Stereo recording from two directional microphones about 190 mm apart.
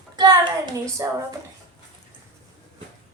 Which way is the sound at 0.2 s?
20° right (ahead or behind).